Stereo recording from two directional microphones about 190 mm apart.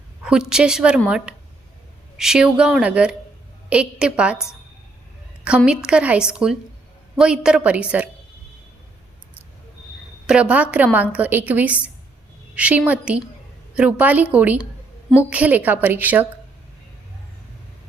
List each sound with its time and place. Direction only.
0.2 s a sound: 5° right (ahead or behind)
0.5 s a woman's voice: 5° right (ahead or behind)
5.6 s a woman's voice: 5° right (ahead or behind)
10.2 s a woman's voice: 5° right (ahead or behind)